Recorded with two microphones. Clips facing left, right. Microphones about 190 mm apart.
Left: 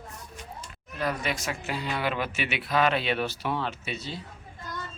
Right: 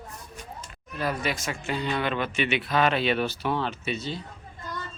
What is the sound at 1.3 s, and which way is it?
Speech, centre (ahead or behind).